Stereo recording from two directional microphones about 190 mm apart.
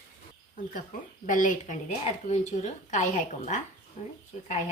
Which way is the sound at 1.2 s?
45° left (ahead or behind).